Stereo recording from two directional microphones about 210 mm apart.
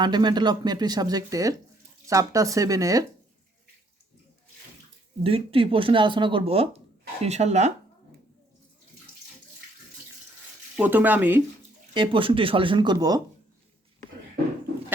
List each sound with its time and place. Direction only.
0.0 s speech: 20° right (ahead or behind)
5.2 s speech: 25° right (ahead or behind)
10.8 s speech: 10° right (ahead or behind)
11.9 s speech: 25° right (ahead or behind)